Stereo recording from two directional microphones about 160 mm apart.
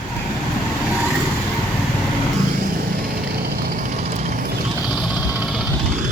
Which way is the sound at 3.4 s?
70° right (ahead or behind).